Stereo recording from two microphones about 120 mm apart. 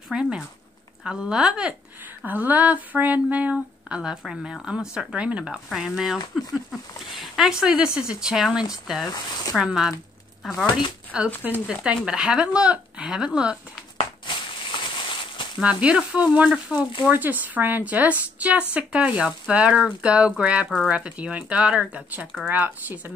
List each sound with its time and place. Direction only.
0.1 s speech: 5° right (ahead or behind)
9.1 s speech: 30° left (ahead or behind)
9.6 s speech: 5° right (ahead or behind)
14.2 s a sound: 45° left (ahead or behind)
15.6 s speech: 10° right (ahead or behind)